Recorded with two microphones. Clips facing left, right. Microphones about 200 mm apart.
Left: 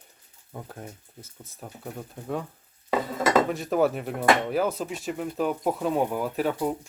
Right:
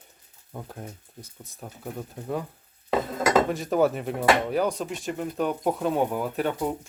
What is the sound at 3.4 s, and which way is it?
Speech, centre (ahead or behind).